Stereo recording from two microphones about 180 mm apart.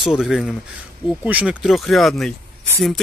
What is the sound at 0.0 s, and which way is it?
Speech, centre (ahead or behind).